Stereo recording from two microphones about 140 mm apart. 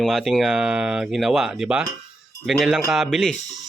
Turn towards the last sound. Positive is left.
turn(degrees=0)  # may be behind; listen again after turning